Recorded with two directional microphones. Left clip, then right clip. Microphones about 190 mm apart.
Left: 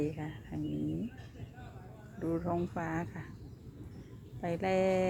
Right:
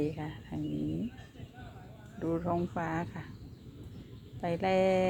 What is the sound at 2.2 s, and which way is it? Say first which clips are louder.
Speech: right 2 dB; centre (ahead or behind).